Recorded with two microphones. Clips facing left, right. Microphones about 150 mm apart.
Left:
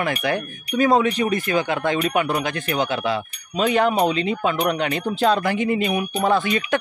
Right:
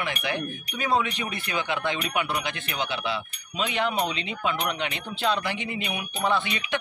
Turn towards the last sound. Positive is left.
turn(degrees=45)  # may be behind; listen again after turning